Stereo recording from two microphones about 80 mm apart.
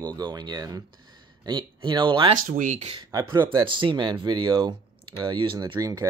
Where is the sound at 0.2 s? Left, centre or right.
Right.